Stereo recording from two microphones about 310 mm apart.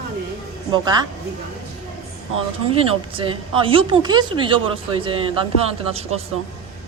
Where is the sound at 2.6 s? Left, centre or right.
Centre.